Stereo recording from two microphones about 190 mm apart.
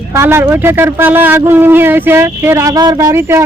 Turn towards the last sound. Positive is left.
turn(degrees=-10)  # may be behind; listen again after turning